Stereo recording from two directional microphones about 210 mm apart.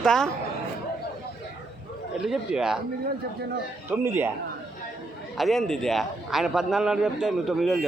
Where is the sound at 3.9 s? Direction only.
10° right (ahead or behind).